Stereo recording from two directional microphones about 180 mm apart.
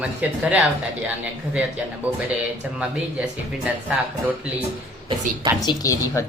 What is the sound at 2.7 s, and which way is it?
Speech, 5° right (ahead or behind).